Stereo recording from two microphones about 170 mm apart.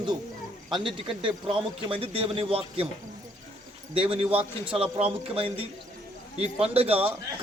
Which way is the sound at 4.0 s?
35° right (ahead or behind).